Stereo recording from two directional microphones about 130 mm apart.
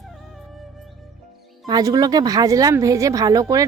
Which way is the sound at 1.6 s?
30° right (ahead or behind).